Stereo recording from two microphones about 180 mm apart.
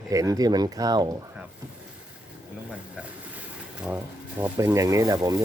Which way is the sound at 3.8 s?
10° right (ahead or behind).